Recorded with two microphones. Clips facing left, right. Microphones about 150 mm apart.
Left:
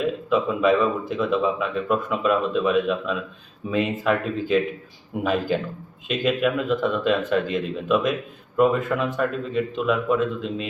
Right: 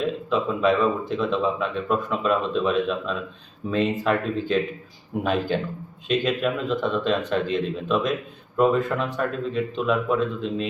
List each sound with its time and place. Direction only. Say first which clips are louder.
0.0 s speech: left 2 dB; 5° left (ahead or behind)